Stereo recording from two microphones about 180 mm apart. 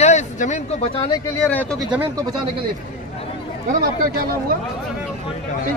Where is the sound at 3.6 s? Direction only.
55° right (ahead or behind).